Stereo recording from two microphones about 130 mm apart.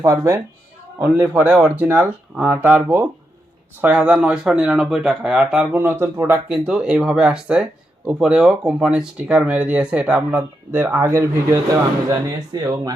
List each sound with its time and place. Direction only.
0.0 s speech: 20° right (ahead or behind); by 5.6 s 5° right (ahead or behind)
5.7 s speech: 15° right (ahead or behind)
6.5 s speech: 5° right (ahead or behind); by 12.9 s 30° right (ahead or behind)